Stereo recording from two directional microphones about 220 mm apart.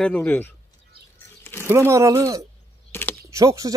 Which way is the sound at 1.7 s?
10° right (ahead or behind).